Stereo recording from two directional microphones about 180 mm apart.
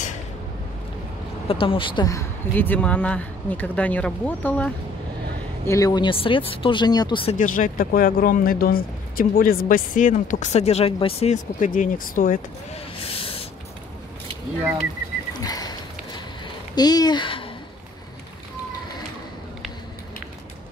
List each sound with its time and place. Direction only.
1.5 s speech: 30° left (ahead or behind); by 4.7 s 10° left (ahead or behind)
5.7 s speech: 20° left (ahead or behind)
7.3 s speech: 50° left (ahead or behind)
13.0 s a sound: 30° left (ahead or behind)
15.3 s a sound: 20° left (ahead or behind)
16.7 s speech: 20° left (ahead or behind)